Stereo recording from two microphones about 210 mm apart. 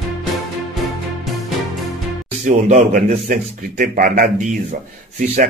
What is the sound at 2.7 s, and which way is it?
Speech, 40° right (ahead or behind).